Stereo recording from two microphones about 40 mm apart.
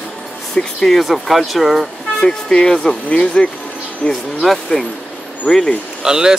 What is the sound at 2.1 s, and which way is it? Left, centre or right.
Speech, centre.